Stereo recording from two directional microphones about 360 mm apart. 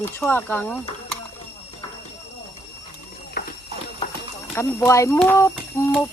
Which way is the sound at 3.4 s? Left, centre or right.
Left.